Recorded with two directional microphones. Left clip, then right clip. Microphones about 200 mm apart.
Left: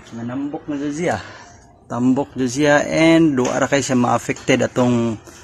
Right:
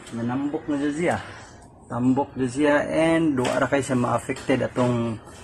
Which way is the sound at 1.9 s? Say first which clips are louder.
Left 4 dB; 50° left (ahead or behind).